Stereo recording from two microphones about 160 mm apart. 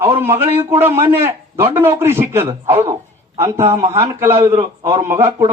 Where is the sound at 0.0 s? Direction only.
15° right (ahead or behind).